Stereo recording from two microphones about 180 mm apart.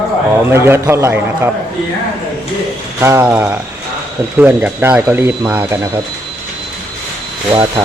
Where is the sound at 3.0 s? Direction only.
15° right (ahead or behind).